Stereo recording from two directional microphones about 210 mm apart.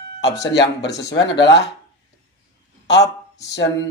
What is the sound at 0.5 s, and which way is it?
Speech, 55° left (ahead or behind).